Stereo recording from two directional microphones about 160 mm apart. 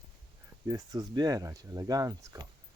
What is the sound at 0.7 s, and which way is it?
Speech, 25° right (ahead or behind).